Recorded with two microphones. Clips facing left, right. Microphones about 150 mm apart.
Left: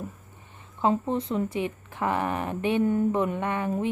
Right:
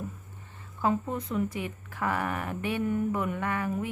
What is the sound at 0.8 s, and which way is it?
A woman's voice, 25° left (ahead or behind).